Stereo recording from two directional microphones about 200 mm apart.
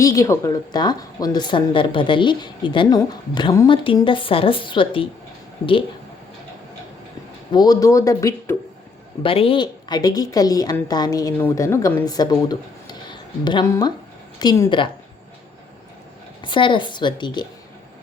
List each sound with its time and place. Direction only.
0.0 s speech: 15° left (ahead or behind)
7.5 s speech: 20° left (ahead or behind)
9.2 s speech: 25° left (ahead or behind)
16.4 s speech: 25° left (ahead or behind)